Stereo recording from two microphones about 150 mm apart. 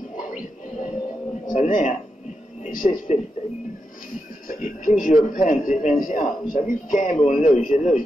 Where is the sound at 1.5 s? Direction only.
60° left (ahead or behind).